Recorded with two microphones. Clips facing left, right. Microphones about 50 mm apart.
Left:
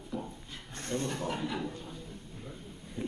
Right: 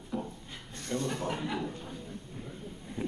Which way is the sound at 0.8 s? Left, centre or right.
Left.